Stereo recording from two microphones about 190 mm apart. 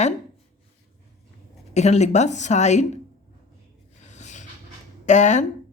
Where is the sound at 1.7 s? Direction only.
35° left (ahead or behind).